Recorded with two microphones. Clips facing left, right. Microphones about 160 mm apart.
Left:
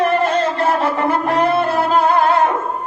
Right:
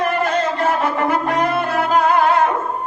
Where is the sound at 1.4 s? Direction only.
30° left (ahead or behind).